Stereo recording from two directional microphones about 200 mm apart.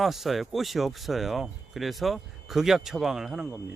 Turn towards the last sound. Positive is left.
turn(degrees=-5)  # may be behind; listen again after turning